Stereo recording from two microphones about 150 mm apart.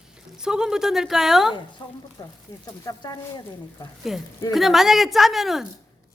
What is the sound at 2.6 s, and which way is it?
Speech, 25° left (ahead or behind).